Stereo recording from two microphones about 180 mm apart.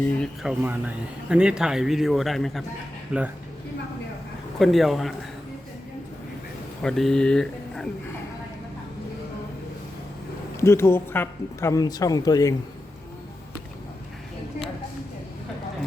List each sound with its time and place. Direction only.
0.4 s speech: 10° right (ahead or behind)
4.6 s speech: centre (ahead or behind)
6.8 s speech: centre (ahead or behind)
10.6 s speech: 15° left (ahead or behind)